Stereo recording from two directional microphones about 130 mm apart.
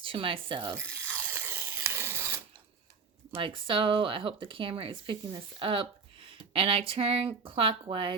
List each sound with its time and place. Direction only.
0.0 s speech: 45° right (ahead or behind)
0.8 s ratchet: 15° right (ahead or behind)
3.3 s speech: 40° right (ahead or behind)